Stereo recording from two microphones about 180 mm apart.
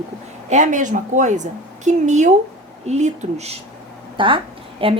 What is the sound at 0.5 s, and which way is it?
A woman's voice, 45° right (ahead or behind).